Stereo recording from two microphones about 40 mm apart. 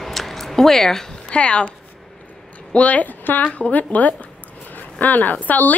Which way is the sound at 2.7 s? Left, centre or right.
Left.